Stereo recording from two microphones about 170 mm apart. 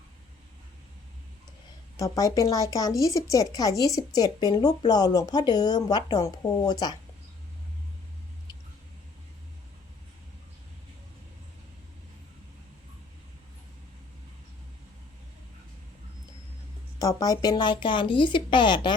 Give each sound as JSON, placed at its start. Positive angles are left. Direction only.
{"t": 2.0, "sound": "speech", "side_deg": 20}
{"t": 17.0, "sound": "speech", "side_deg": 20}